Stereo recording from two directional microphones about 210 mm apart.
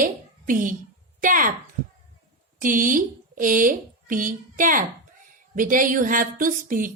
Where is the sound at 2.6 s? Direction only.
40° right (ahead or behind).